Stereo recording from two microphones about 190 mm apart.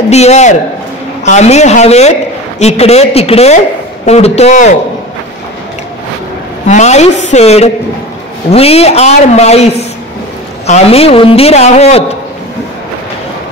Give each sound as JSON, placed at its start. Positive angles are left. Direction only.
{"t": 0.1, "sound": "a man's voice", "side_deg": 35}
{"t": 6.7, "sound": "a man's voice", "side_deg": 35}